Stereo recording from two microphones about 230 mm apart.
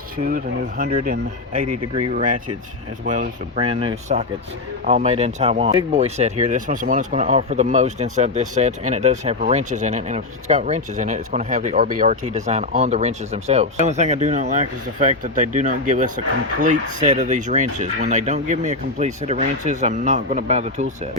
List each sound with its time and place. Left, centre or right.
0.3 s speech: right
1.6 s speech: right
2.0 s speech: right
3.6 s speech: right